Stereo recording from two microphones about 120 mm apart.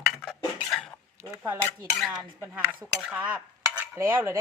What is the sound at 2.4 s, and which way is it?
Speech, 15° right (ahead or behind).